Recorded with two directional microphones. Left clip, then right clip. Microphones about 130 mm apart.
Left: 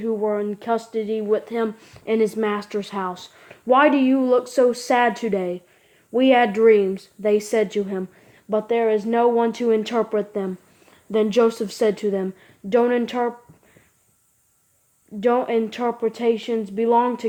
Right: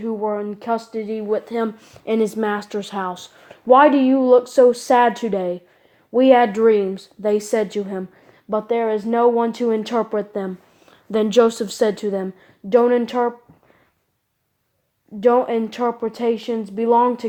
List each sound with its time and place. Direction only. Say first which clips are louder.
0.0 s speech: left 1 dB; 25° right (ahead or behind)
15.2 s speech: right 3 dB; 30° right (ahead or behind)